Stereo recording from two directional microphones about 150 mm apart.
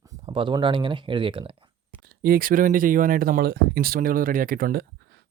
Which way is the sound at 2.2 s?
75° right (ahead or behind).